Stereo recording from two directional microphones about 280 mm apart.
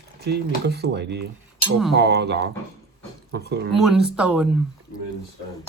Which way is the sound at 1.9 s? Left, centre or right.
Right.